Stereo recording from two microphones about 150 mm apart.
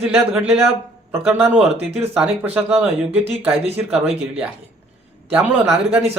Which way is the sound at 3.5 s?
40° right (ahead or behind).